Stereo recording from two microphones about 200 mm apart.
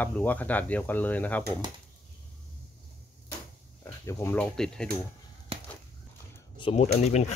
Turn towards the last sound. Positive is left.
turn(degrees=35)  # may be behind; listen again after turning